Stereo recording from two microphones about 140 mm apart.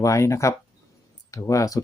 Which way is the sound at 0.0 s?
20° left (ahead or behind).